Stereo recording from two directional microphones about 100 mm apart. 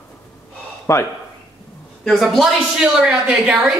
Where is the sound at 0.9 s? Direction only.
30° left (ahead or behind).